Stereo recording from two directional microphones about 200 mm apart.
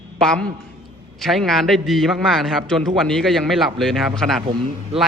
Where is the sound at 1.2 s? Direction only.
Centre (ahead or behind).